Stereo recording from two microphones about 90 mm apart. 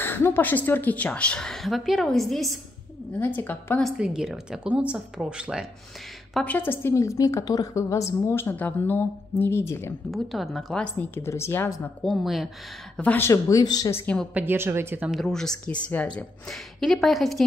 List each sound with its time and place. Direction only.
0.0 s a woman's voice: 25° left (ahead or behind); by 2.6 s centre (ahead or behind)
3.1 s a woman's voice: 20° left (ahead or behind)
3.9 s speech: 10° right (ahead or behind)
6.4 s a woman's voice: 20° left (ahead or behind)
10.1 s a woman's voice: centre (ahead or behind)
11.0 s a woman's voice: 30° left (ahead or behind)
12.0 s a woman's voice: centre (ahead or behind)
12.9 s a woman's voice: 15° left (ahead or behind)
13.2 s speech: 35° left (ahead or behind)
14.3 s speech: 25° right (ahead or behind)
15.0 s a woman's voice: 5° left (ahead or behind)
16.4 s a woman's voice: 5° left (ahead or behind)